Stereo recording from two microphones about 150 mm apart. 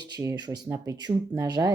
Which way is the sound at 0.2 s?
25° right (ahead or behind).